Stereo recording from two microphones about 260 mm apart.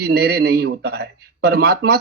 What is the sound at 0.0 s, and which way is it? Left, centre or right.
A man's voice, right.